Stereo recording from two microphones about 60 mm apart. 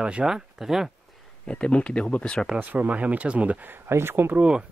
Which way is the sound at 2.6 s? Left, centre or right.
Right.